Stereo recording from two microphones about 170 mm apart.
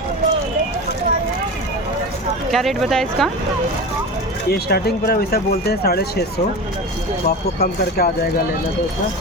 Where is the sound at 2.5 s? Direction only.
Centre (ahead or behind).